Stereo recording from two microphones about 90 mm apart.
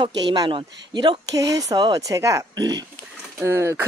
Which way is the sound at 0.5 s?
65° right (ahead or behind).